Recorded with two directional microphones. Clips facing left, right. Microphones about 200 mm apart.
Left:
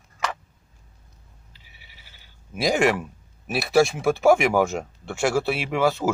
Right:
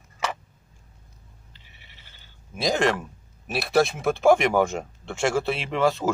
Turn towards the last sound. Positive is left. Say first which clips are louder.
# left 1 dB
turn(degrees=5)  # may be behind; listen again after turning